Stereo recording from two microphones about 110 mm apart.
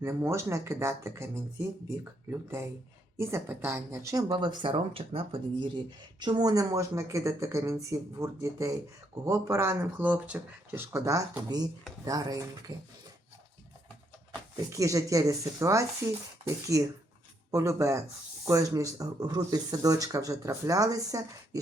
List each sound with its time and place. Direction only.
0.0 s speech: 25° right (ahead or behind)
2.3 s speech: 25° right (ahead or behind)
11.0 s speech: 30° right (ahead or behind)
14.5 s speech: 30° right (ahead or behind)